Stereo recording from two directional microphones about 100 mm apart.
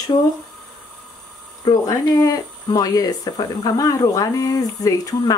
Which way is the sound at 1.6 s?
40° left (ahead or behind).